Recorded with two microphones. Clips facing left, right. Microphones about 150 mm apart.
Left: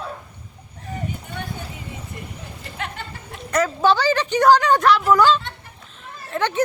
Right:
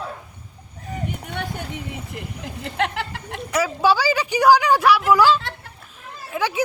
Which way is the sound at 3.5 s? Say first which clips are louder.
Left 1 dB; 10° right (ahead or behind).